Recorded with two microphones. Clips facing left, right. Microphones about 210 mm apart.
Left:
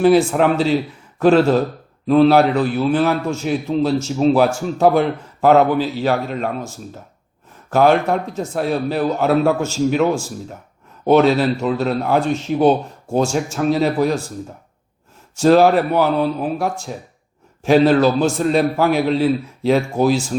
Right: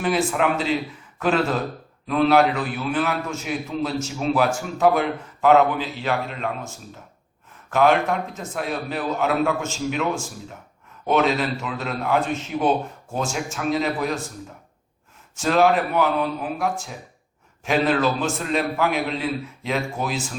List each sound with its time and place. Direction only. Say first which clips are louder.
0.0 s a man's voice: left 8 dB; 35° left (ahead or behind)
7.7 s a man's voice: left 4 dB; 35° left (ahead or behind)
11.0 s a man's voice: left 7 dB; 35° left (ahead or behind)
15.4 s a man's voice: left 7 dB; 35° left (ahead or behind)